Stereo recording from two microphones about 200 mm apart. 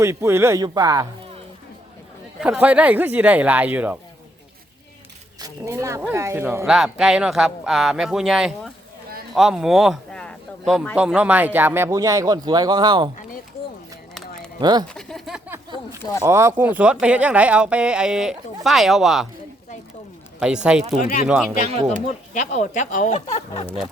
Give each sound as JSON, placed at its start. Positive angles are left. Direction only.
{"t": 0.0, "sound": "speech", "side_deg": -15}
{"t": 2.4, "sound": "speech", "side_deg": -5}
{"t": 5.4, "sound": "speech", "side_deg": -15}
{"t": 14.6, "sound": "speech", "side_deg": -20}
{"t": 14.8, "sound": "speech", "side_deg": 0}
{"t": 15.7, "sound": "speech", "side_deg": -20}
{"t": 20.4, "sound": "speech", "side_deg": -5}
{"t": 21.0, "sound": "speech", "side_deg": 40}
{"t": 21.8, "sound": "speech", "side_deg": -35}
{"t": 22.3, "sound": "speech", "side_deg": 40}
{"t": 23.6, "sound": "speech", "side_deg": 5}